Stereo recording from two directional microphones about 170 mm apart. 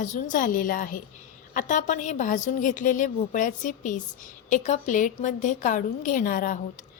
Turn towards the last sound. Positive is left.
turn(degrees=50)  # may be behind; listen again after turning